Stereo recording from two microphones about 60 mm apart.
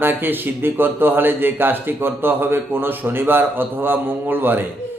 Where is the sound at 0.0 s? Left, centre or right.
Right.